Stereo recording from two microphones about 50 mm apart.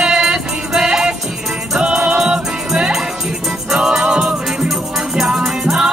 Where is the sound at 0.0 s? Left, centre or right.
Centre.